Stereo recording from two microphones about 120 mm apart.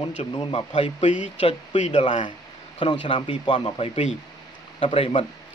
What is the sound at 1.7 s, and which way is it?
Speech, 70° left (ahead or behind).